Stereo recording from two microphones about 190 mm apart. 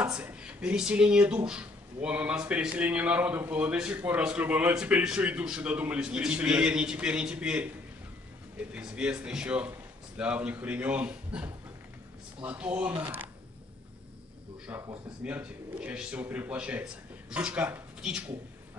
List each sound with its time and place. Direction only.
0.2 s speech: 5° right (ahead or behind)
14.7 s speech: 10° right (ahead or behind)